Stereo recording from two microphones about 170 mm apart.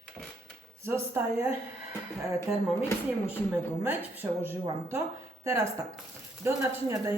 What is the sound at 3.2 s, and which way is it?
A woman's voice, 10° right (ahead or behind).